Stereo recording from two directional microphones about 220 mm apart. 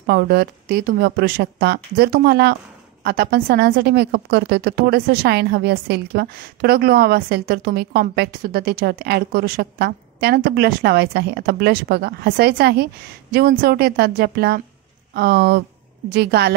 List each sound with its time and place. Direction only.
0.0 s a woman's voice: 45° right (ahead or behind)